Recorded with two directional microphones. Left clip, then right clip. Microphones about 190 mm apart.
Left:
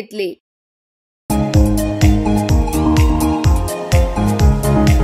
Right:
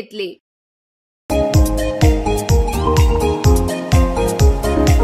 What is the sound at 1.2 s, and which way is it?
Music, centre (ahead or behind).